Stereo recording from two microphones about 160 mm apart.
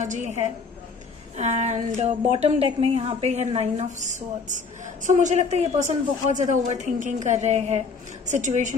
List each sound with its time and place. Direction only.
0.0 s a woman's voice: 50° right (ahead or behind)